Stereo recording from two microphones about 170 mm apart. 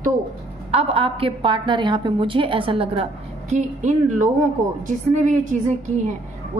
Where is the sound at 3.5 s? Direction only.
40° right (ahead or behind).